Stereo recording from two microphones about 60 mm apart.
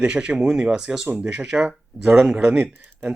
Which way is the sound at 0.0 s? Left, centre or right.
Centre.